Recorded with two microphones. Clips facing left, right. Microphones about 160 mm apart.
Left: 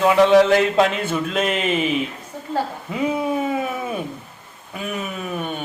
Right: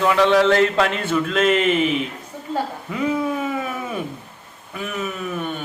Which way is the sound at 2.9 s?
25° left (ahead or behind).